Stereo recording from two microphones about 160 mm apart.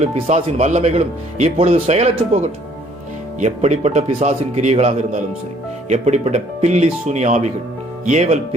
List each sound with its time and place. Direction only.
0.0 s speech: 45° right (ahead or behind)